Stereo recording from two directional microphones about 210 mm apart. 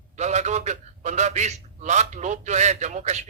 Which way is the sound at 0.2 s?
35° right (ahead or behind).